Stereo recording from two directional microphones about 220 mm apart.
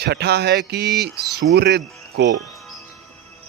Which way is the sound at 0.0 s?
50° right (ahead or behind).